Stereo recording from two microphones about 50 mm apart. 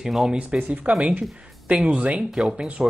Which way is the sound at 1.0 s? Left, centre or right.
Right.